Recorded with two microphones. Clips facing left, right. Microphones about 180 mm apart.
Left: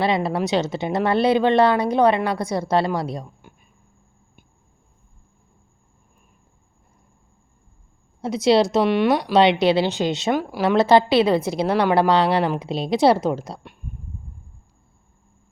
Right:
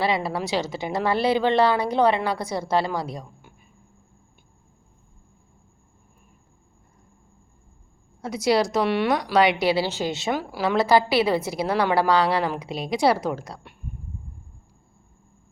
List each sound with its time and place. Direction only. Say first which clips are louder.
0.0 s speech: left 3 dB; 20° left (ahead or behind)
8.2 s speech: left 4 dB; 25° left (ahead or behind)